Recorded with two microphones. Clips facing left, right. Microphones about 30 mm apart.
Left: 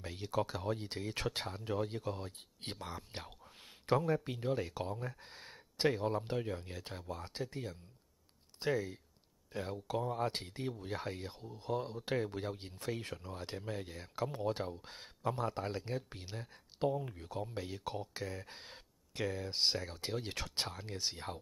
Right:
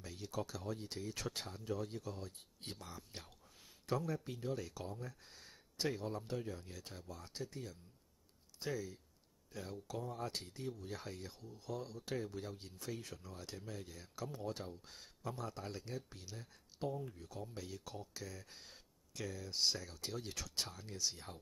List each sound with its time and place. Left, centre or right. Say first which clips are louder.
0.0 s speech: left 7 dB; left